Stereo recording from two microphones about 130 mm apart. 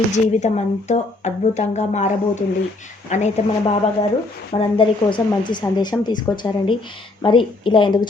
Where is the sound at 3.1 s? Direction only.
65° left (ahead or behind).